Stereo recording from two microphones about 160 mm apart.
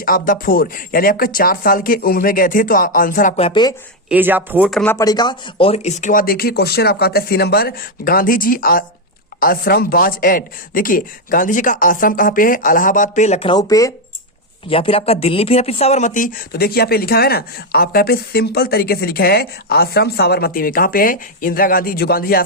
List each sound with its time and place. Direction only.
0.0 s speech: 60° left (ahead or behind)
3.3 s a woman's voice: 35° left (ahead or behind)
4.1 s speech: 10° right (ahead or behind)
4.7 s speech: 5° left (ahead or behind)
4.9 s speech: 25° left (ahead or behind); by 13.5 s 45° left (ahead or behind)
13.5 s a woman's voice: 20° left (ahead or behind)
14.7 s speech: 35° left (ahead or behind); by 22.4 s 65° left (ahead or behind)